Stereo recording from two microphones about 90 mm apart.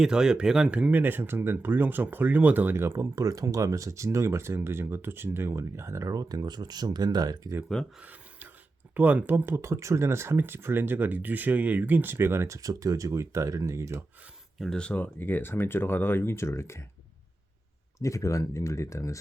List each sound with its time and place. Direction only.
0.0 s speech: 10° right (ahead or behind); by 3.1 s 30° right (ahead or behind)
3.2 s speech: 40° right (ahead or behind)
8.0 s a sound: 20° right (ahead or behind)
9.0 s speech: 20° right (ahead or behind); by 14.0 s 35° right (ahead or behind)
14.6 s speech: 10° left (ahead or behind); by 16.8 s 30° left (ahead or behind)
18.0 s speech: 35° left (ahead or behind)